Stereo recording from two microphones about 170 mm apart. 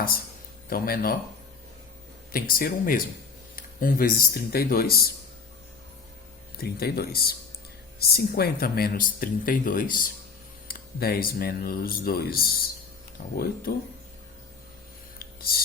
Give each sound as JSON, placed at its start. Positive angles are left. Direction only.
{"t": 0.7, "sound": "speech", "side_deg": 60}
{"t": 2.3, "sound": "speech", "side_deg": 60}
{"t": 6.6, "sound": "speech", "side_deg": 65}
{"t": 15.2, "sound": "a sound", "side_deg": 65}